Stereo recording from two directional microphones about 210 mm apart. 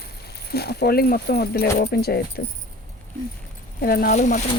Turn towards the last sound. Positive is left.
turn(degrees=35)  # may be behind; listen again after turning